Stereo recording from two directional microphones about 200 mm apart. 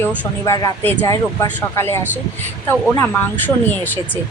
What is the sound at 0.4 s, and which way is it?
A woman's voice, 15° left (ahead or behind).